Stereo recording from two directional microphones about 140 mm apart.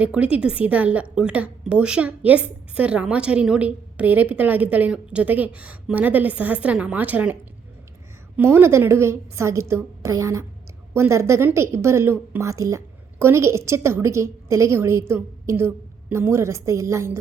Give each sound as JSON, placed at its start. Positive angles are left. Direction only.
{"t": 0.0, "sound": "a woman's voice", "side_deg": -10}
{"t": 8.4, "sound": "a woman's voice", "side_deg": -15}